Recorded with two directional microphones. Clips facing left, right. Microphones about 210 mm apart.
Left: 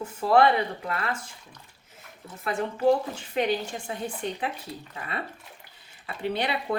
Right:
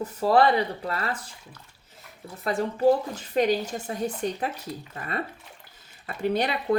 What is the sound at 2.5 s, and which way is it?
A woman's voice, 35° right (ahead or behind).